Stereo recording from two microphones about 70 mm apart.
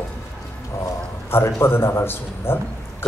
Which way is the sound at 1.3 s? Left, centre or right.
Left.